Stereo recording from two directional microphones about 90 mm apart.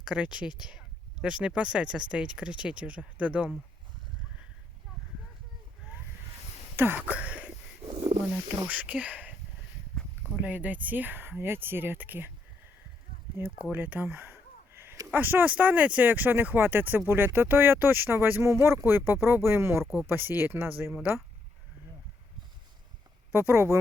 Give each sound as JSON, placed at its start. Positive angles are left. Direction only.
{"t": 0.0, "sound": "speech", "side_deg": -10}
{"t": 6.7, "sound": "a sound", "side_deg": -20}
{"t": 8.6, "sound": "speech", "side_deg": -15}
{"t": 10.3, "sound": "speech", "side_deg": -15}
{"t": 13.4, "sound": "speech", "side_deg": -25}
{"t": 13.7, "sound": "a sound", "side_deg": -20}
{"t": 15.1, "sound": "speech", "side_deg": -20}
{"t": 23.3, "sound": "speech", "side_deg": -25}